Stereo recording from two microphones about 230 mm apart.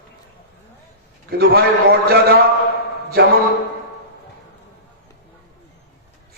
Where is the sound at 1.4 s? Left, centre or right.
Right.